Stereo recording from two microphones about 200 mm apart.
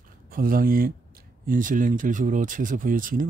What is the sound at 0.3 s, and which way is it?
Speech, 45° right (ahead or behind).